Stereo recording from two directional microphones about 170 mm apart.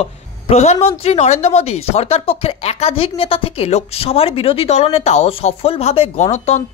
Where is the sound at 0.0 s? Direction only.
40° left (ahead or behind).